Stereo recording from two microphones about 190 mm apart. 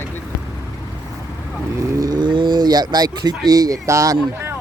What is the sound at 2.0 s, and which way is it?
Speech, 20° right (ahead or behind).